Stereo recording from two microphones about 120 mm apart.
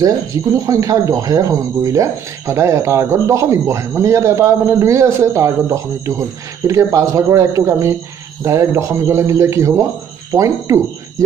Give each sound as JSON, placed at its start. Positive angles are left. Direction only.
{"t": 0.0, "sound": "speech", "side_deg": -25}